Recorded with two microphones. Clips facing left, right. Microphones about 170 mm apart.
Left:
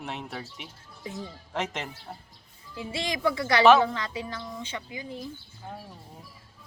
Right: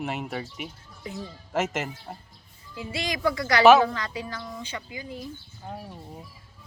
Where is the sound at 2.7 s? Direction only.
25° left (ahead or behind).